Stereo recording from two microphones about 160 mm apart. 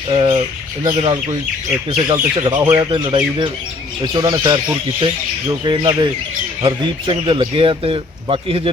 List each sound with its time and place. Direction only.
0.1 s bird: 30° right (ahead or behind)
1.0 s speech: 25° right (ahead or behind)